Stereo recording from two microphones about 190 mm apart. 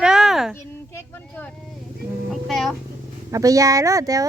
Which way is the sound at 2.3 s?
Centre (ahead or behind).